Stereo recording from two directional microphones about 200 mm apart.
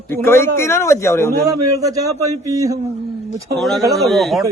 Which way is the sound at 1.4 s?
15° right (ahead or behind).